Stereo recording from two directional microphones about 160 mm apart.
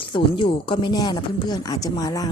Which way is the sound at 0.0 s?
35° left (ahead or behind).